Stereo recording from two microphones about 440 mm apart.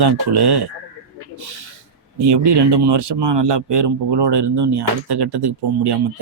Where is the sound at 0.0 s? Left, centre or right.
Right.